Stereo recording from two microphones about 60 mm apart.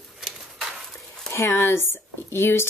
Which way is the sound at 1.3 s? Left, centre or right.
Left.